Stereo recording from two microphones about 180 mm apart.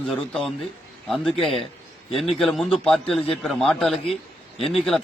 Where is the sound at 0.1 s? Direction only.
5° left (ahead or behind).